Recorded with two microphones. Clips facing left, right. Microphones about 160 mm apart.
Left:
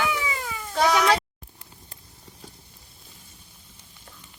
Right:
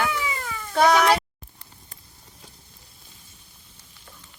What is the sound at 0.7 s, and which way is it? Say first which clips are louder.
Speech: right 3 dB; 55° right (ahead or behind).